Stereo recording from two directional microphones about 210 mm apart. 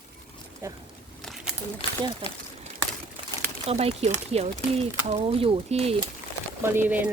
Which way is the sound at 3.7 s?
30° right (ahead or behind).